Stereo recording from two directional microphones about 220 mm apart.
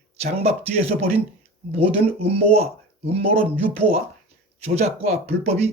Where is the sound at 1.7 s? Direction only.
25° right (ahead or behind).